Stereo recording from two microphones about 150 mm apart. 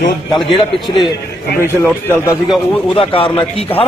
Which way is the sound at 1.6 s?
15° left (ahead or behind).